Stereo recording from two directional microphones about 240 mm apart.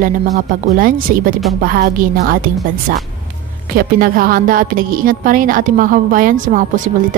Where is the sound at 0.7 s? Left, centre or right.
Right.